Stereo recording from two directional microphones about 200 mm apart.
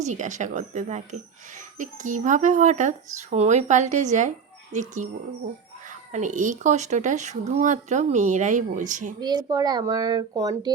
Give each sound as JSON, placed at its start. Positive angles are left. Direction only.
{"t": 0.0, "sound": "speech", "side_deg": -35}
{"t": 9.2, "sound": "speech", "side_deg": -20}